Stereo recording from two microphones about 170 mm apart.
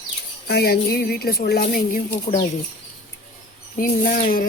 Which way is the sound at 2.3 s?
45° left (ahead or behind).